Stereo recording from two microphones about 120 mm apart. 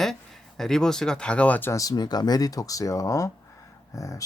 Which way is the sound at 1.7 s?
30° left (ahead or behind).